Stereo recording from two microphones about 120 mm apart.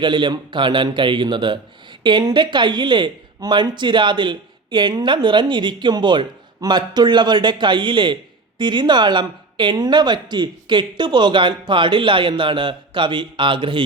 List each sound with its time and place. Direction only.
0.0 s a man's voice: 40° right (ahead or behind)